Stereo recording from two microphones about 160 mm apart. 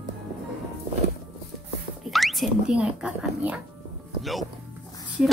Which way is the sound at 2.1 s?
Centre (ahead or behind).